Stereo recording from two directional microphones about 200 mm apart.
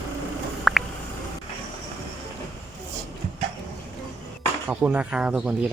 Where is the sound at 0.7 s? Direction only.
Centre (ahead or behind).